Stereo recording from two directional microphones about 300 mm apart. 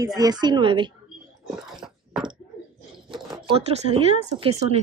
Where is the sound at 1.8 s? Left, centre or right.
Centre.